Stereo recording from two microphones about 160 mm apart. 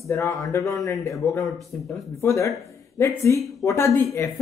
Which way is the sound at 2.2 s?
20° left (ahead or behind).